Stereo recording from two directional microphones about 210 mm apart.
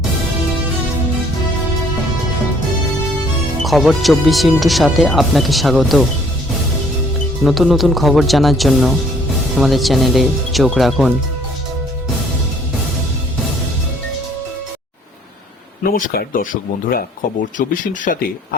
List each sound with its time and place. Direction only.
3.6 s speech: centre (ahead or behind)
7.4 s speech: centre (ahead or behind)
15.8 s speech: 45° left (ahead or behind)